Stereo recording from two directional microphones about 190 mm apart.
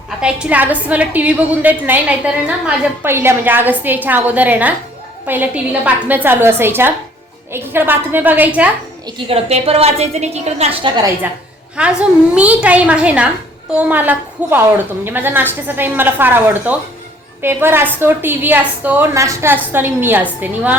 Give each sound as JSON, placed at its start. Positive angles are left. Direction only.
{"t": 0.2, "sound": "a woman's voice", "side_deg": -5}
{"t": 9.0, "sound": "a woman's voice", "side_deg": -25}
{"t": 11.8, "sound": "a woman's voice", "side_deg": -5}